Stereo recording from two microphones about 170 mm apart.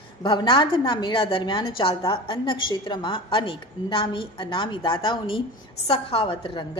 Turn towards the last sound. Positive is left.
turn(degrees=30)  # may be behind; listen again after turning